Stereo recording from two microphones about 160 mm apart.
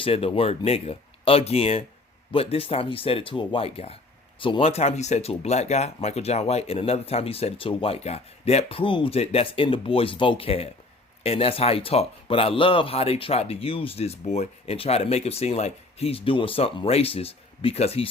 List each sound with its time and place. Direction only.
0.0 s speech: 35° left (ahead or behind)